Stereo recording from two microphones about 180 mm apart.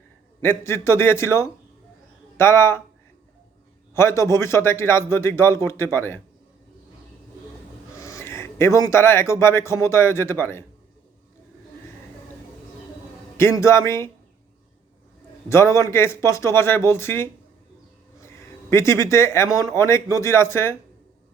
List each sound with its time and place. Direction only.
0.4 s a man's voice: 15° left (ahead or behind)
3.9 s a man's voice: 15° left (ahead or behind)
7.9 s speech: 15° left (ahead or behind)
13.3 s a man's voice: 15° left (ahead or behind)
15.4 s a man's voice: 15° left (ahead or behind)
18.2 s a sound: 15° left (ahead or behind)
19.6 s a man's voice: 15° left (ahead or behind)